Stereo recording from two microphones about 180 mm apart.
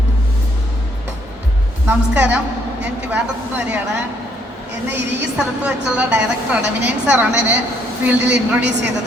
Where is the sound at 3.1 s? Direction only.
10° right (ahead or behind).